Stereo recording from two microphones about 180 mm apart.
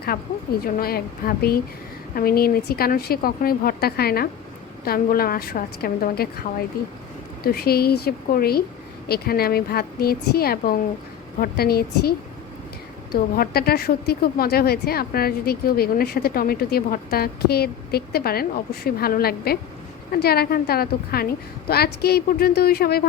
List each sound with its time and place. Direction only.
0.6 s a woman's voice: 55° left (ahead or behind)